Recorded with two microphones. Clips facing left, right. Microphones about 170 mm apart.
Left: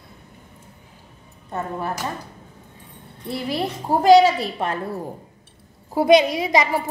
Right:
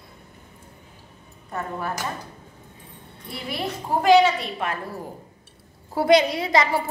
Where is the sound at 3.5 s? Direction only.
35° left (ahead or behind).